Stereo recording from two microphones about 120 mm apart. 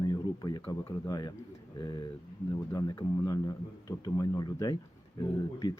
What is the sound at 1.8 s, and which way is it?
Speech, 35° left (ahead or behind).